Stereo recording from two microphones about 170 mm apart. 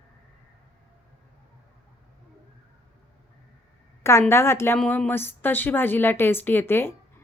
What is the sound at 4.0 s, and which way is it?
A woman's voice, 15° left (ahead or behind).